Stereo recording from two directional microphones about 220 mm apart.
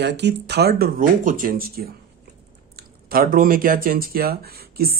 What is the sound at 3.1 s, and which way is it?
Speech, 40° right (ahead or behind).